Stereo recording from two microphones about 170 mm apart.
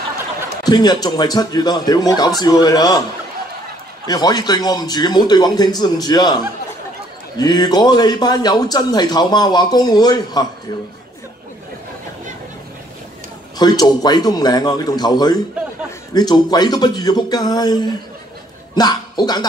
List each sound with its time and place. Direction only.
0.7 s speech: 25° left (ahead or behind)
4.1 s speech: 25° left (ahead or behind)
13.6 s speech: 25° left (ahead or behind)